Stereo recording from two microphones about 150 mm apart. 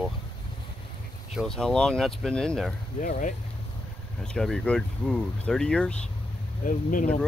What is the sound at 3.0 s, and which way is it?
Speech, 60° left (ahead or behind).